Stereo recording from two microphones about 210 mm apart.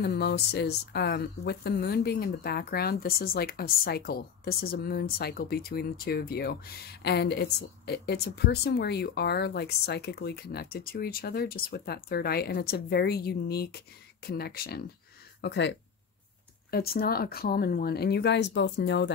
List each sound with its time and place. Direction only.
0.0 s speech: 50° left (ahead or behind)
16.7 s speech: 45° left (ahead or behind)